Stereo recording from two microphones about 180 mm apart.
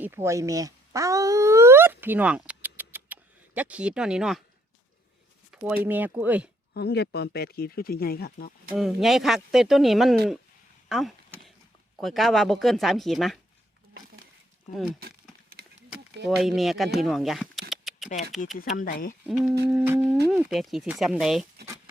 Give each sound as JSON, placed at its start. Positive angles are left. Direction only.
{"t": 0.0, "sound": "dog", "side_deg": -15}
{"t": 5.5, "sound": "speech", "side_deg": -10}
{"t": 6.7, "sound": "speech", "side_deg": 65}
{"t": 8.7, "sound": "speech", "side_deg": 0}
{"t": 14.9, "sound": "a sound", "side_deg": -60}
{"t": 16.4, "sound": "speech", "side_deg": 0}
{"t": 18.5, "sound": "speech", "side_deg": 50}
{"t": 19.2, "sound": "speech", "side_deg": 0}